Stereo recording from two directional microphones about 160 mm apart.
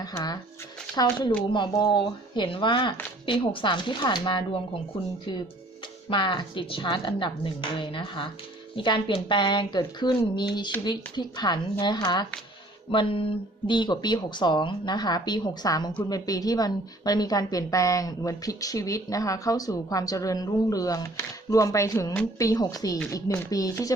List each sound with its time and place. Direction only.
0.0 s speech: 25° left (ahead or behind)
6.1 s speech: 30° left (ahead or behind)